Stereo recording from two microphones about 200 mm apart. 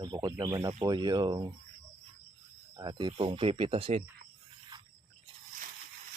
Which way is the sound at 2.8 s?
20° right (ahead or behind).